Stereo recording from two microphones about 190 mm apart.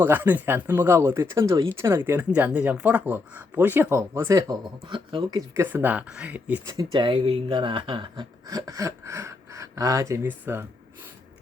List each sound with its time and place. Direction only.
0.0 s speech: 10° right (ahead or behind)
5.6 s speech: 10° right (ahead or behind)
6.7 s speech: 20° right (ahead or behind)